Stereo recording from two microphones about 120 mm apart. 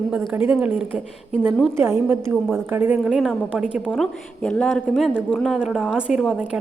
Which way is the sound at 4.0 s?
5° left (ahead or behind).